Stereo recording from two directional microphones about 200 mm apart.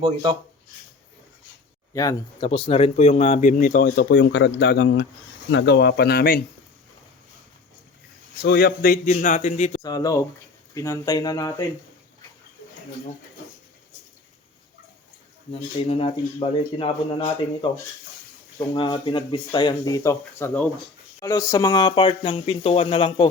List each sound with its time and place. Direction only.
0.0 s speech: 20° right (ahead or behind)
1.9 s speech: 15° left (ahead or behind)
2.5 s speech: 30° left (ahead or behind); by 6.4 s 50° left (ahead or behind)
8.4 s speech: 50° left (ahead or behind); by 9.8 s 35° left (ahead or behind)
9.8 s speech: 20° left (ahead or behind)
15.9 s speech: 30° left (ahead or behind)
18.7 s speech: 25° left (ahead or behind)